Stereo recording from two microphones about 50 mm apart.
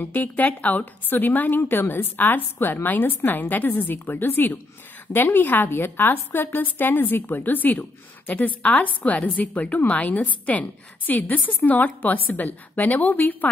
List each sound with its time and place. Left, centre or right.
0.0 s a woman's voice: left